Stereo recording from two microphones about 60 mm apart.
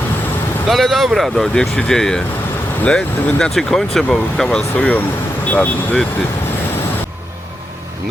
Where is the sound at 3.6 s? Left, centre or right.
Centre.